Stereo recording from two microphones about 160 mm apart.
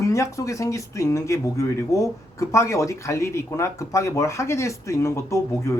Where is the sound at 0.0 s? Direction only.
20° left (ahead or behind).